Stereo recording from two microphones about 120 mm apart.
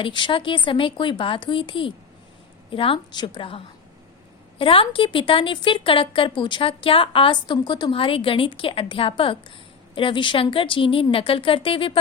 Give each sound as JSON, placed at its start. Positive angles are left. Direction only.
{"t": 0.0, "sound": "speech", "side_deg": 45}
{"t": 7.9, "sound": "speech", "side_deg": 50}